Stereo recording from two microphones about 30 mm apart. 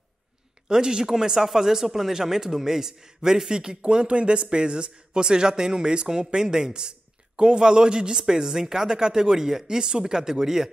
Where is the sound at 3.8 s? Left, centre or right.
Right.